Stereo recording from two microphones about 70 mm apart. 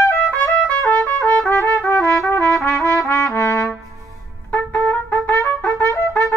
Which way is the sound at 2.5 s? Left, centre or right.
Left.